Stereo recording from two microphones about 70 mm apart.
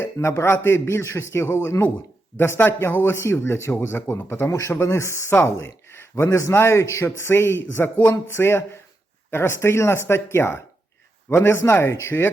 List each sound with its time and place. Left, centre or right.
0.0 s a man's voice: left
5.3 s a man's voice: left